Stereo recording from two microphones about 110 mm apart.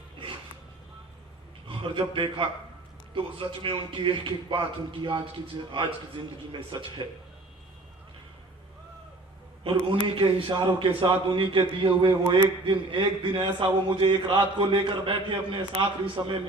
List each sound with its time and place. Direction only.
1.6 s a man's voice: 50° right (ahead or behind)
9.6 s a man's voice: 50° right (ahead or behind)